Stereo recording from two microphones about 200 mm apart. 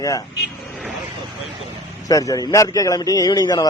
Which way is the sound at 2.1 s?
15° left (ahead or behind).